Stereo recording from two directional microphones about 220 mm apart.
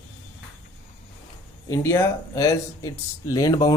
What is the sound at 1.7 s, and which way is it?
Speech, 15° left (ahead or behind).